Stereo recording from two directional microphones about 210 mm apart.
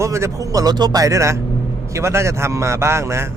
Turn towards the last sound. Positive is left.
turn(degrees=-15)  # may be behind; listen again after turning